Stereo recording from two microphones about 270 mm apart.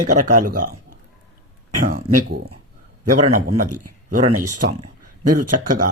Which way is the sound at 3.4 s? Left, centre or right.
Right.